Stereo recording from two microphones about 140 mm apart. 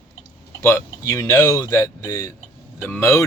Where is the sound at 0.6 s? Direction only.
20° left (ahead or behind).